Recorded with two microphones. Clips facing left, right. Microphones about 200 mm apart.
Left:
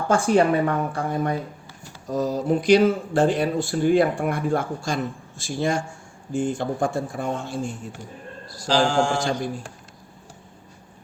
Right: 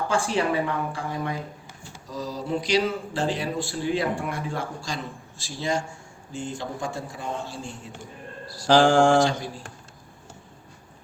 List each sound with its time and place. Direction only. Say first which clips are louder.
0.1 s speech: left 8 dB; 50° left (ahead or behind)
8.6 s mantra: right 3 dB; 55° right (ahead or behind)